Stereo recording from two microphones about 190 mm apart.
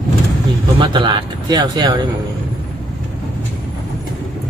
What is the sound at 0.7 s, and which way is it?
Speech, 25° right (ahead or behind).